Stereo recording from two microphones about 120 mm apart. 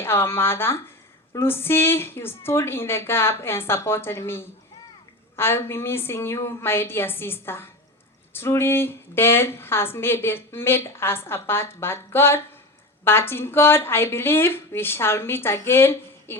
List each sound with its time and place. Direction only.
0.0 s a woman's voice: 20° left (ahead or behind)